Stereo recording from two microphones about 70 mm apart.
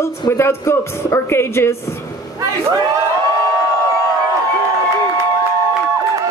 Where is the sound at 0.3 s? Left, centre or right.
Left.